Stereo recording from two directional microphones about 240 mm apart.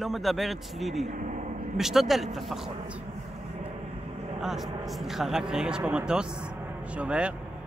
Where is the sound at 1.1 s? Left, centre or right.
Right.